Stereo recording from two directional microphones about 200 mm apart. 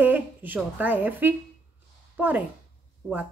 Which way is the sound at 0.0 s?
10° right (ahead or behind).